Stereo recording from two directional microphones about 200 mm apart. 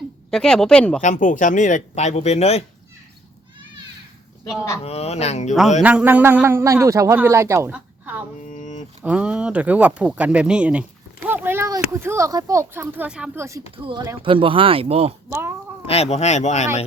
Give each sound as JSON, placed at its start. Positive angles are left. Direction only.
{"t": 0.3, "sound": "speech", "side_deg": 5}
{"t": 1.0, "sound": "speech", "side_deg": 40}
{"t": 4.8, "sound": "speech", "side_deg": 30}
{"t": 5.8, "sound": "a man's voice", "side_deg": -5}
{"t": 8.4, "sound": "a sound", "side_deg": 40}
{"t": 9.0, "sound": "speech", "side_deg": -5}
{"t": 13.7, "sound": "speech", "side_deg": -25}
{"t": 15.3, "sound": "a man's voice", "side_deg": -10}
{"t": 15.9, "sound": "speech", "side_deg": 30}